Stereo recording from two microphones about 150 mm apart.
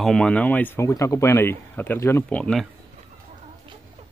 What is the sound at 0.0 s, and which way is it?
Speech, 5° left (ahead or behind).